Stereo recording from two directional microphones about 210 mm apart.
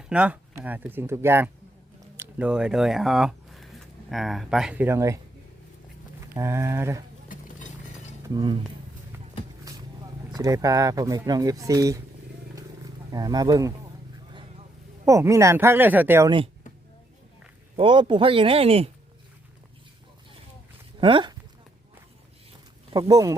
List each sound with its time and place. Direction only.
0.0 s speech: 5° right (ahead or behind)
8.3 s speech: 20° right (ahead or behind)
9.7 s vehicle: 15° right (ahead or behind)
10.3 s speech: 15° right (ahead or behind)
12.5 s wild animals: 20° right (ahead or behind)
15.0 s speech: 15° right (ahead or behind)
17.7 s speech: 20° right (ahead or behind)
21.0 s speech: 20° right (ahead or behind)
22.9 s speech: 15° right (ahead or behind)